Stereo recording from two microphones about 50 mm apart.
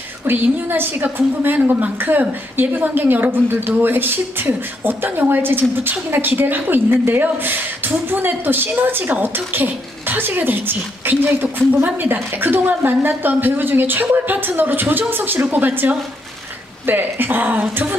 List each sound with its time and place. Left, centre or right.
0.2 s a woman's voice: right